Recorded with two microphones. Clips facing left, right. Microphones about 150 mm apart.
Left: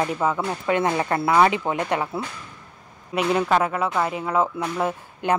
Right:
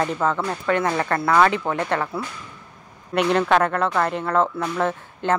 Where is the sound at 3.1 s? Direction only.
5° left (ahead or behind).